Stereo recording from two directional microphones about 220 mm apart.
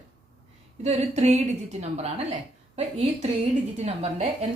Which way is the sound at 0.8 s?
30° right (ahead or behind).